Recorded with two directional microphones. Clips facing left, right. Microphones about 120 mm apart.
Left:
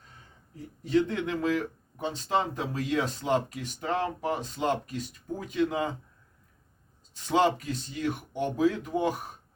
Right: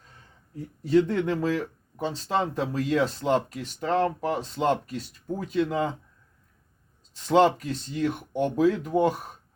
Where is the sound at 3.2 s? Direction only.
40° right (ahead or behind).